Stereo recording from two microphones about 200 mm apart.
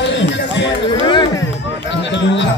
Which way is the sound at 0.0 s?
60° left (ahead or behind).